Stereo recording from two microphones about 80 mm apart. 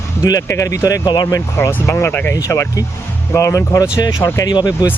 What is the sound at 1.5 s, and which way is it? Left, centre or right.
Speech, left.